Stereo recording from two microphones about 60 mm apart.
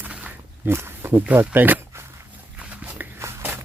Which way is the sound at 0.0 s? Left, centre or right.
Right.